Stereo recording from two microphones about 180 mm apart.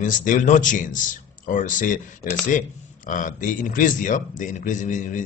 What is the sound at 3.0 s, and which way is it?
Speech, 45° left (ahead or behind).